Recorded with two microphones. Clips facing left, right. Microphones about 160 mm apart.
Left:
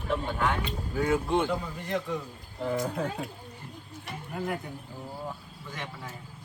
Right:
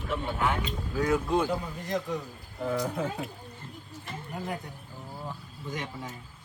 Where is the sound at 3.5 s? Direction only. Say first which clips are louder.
Even; 15° left (ahead or behind).